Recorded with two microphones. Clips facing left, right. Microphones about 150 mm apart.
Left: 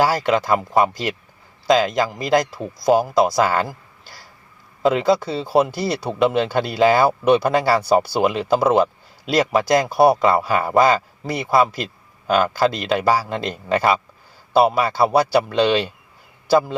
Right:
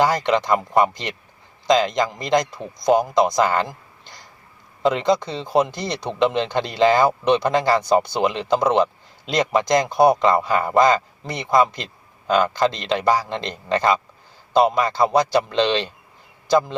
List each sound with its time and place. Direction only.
0.0 s a man's voice: 5° left (ahead or behind)